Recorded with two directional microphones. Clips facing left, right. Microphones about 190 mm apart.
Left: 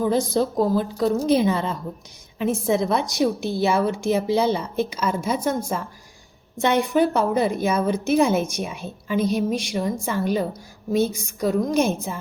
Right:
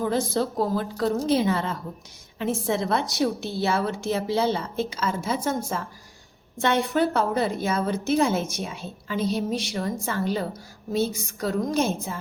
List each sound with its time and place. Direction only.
0.0 s a woman's voice: 15° left (ahead or behind)